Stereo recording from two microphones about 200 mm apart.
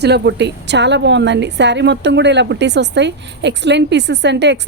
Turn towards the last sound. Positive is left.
turn(degrees=-60)  # may be behind; listen again after turning